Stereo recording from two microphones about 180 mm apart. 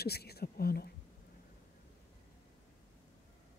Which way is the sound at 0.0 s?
60° left (ahead or behind).